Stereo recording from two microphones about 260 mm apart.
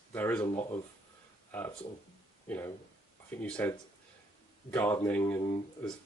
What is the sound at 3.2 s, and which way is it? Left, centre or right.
Speech, centre.